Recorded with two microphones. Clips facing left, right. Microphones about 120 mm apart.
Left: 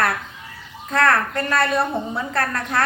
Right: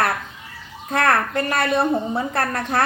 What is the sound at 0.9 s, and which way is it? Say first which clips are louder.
A woman's voice: even; 20° right (ahead or behind).